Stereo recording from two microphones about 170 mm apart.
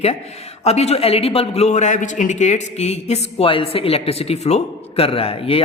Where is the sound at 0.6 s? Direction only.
40° left (ahead or behind).